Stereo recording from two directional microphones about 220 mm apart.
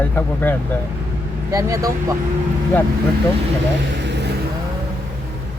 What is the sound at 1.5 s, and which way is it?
Speech, 15° right (ahead or behind).